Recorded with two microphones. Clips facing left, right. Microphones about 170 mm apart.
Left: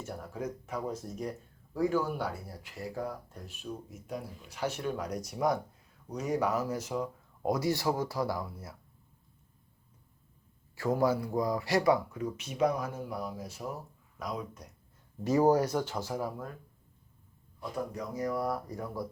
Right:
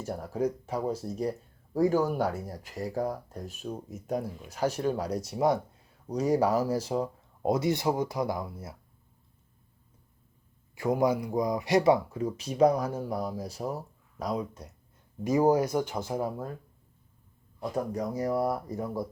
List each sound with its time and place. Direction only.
0.0 s speech: 35° right (ahead or behind); by 8.7 s 20° right (ahead or behind)
10.8 s speech: 15° right (ahead or behind)
15.2 s speech: 10° right (ahead or behind)
17.6 s speech: 35° right (ahead or behind)